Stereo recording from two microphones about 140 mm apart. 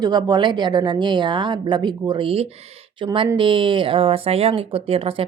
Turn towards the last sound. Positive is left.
turn(degrees=-40)  # may be behind; listen again after turning